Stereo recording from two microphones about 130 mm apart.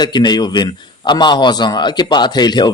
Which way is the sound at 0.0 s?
35° left (ahead or behind).